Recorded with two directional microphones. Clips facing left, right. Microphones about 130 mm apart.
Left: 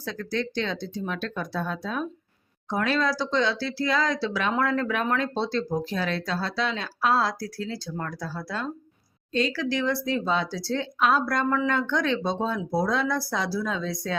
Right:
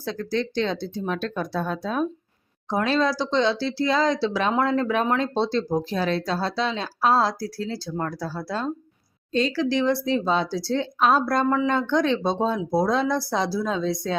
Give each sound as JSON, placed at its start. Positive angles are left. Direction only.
{"t": 0.0, "sound": "speech", "side_deg": -30}